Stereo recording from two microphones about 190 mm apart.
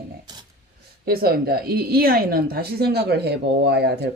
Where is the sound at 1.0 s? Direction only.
55° right (ahead or behind).